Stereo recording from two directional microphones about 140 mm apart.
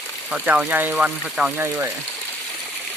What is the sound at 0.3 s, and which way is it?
Speech, 10° right (ahead or behind).